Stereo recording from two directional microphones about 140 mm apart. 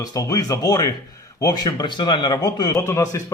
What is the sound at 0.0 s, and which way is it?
A man's voice, 25° left (ahead or behind).